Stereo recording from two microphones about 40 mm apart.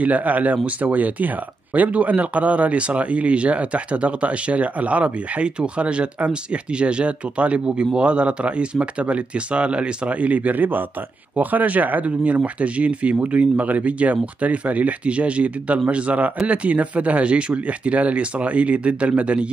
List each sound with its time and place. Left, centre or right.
0.0 s speech: right